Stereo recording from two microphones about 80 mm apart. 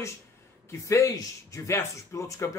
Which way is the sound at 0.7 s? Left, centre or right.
Left.